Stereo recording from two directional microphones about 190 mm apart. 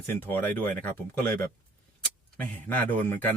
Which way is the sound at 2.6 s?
10° left (ahead or behind).